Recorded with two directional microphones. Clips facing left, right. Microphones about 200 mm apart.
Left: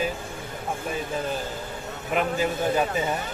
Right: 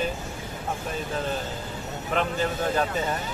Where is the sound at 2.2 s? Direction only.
10° left (ahead or behind).